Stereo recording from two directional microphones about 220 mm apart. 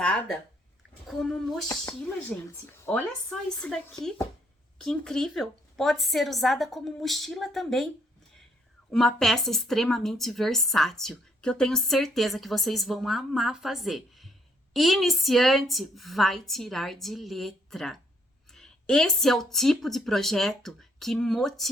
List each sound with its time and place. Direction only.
0.0 s a woman's voice: 5° left (ahead or behind)
1.6 s a woman's voice: 15° left (ahead or behind); by 7.9 s centre (ahead or behind)
8.9 s a woman's voice: centre (ahead or behind)